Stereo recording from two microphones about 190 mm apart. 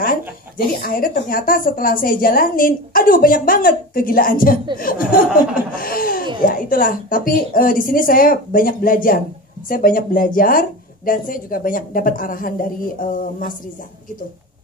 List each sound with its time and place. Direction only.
0.0 s speech: 50° left (ahead or behind)